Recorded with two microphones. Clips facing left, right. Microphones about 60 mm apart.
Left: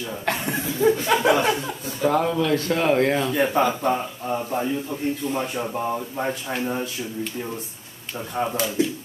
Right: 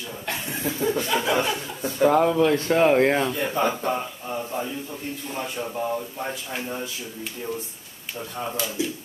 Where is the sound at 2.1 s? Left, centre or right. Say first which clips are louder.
Right 1 dB; centre.